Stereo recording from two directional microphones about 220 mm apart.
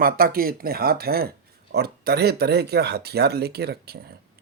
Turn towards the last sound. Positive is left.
turn(degrees=-45)  # may be behind; listen again after turning